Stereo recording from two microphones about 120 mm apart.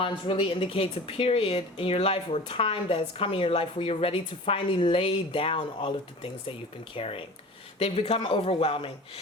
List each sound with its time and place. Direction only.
0.0 s a woman's voice: 45° left (ahead or behind)
6.9 s a woman's voice: 50° left (ahead or behind)